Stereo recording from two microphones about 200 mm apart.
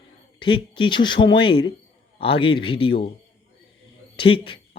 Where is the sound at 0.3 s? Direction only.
25° left (ahead or behind).